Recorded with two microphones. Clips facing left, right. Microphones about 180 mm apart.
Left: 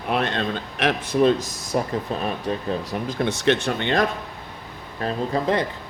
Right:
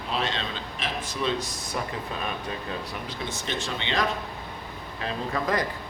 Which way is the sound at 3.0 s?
60° left (ahead or behind).